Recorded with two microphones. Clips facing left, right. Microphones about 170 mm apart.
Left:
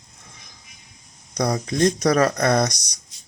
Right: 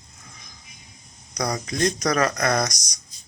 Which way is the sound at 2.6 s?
30° left (ahead or behind).